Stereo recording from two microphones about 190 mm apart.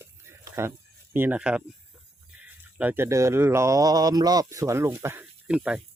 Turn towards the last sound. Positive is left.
turn(degrees=-5)  # may be behind; listen again after turning